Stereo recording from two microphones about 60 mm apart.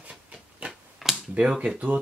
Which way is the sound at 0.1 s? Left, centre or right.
Centre.